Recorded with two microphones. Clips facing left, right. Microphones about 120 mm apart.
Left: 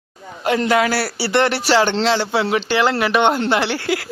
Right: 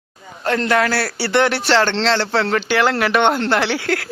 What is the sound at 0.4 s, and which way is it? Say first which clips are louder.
A man's voice: left 1 dB; 10° left (ahead or behind).